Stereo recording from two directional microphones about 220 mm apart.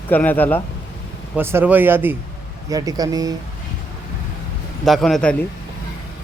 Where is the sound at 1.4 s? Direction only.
10° right (ahead or behind).